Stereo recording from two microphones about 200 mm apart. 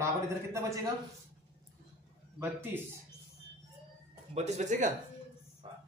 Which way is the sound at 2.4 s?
10° right (ahead or behind).